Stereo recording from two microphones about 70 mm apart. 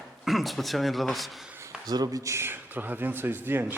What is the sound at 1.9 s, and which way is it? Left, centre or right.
Speech, right.